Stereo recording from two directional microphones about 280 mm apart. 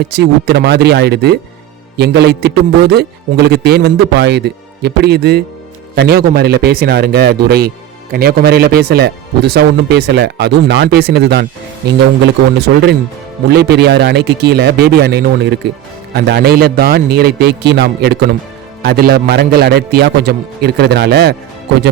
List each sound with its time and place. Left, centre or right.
0.1 s a man's voice: right